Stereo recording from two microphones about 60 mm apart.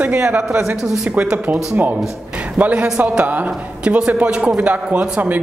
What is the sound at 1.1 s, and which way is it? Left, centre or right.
A man's voice, right.